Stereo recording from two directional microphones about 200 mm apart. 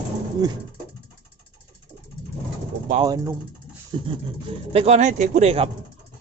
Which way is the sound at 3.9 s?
25° right (ahead or behind).